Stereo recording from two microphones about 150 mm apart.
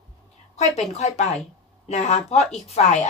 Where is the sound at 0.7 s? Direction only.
45° left (ahead or behind).